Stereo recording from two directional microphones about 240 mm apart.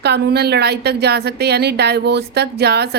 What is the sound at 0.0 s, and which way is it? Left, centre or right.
A woman's voice, right.